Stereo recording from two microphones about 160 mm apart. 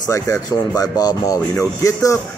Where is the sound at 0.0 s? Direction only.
20° left (ahead or behind).